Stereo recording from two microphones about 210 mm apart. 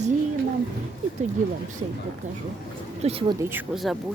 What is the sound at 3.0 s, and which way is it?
Speech, 25° right (ahead or behind).